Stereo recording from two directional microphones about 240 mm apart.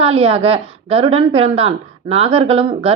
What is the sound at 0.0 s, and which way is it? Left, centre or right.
A woman's voice, right.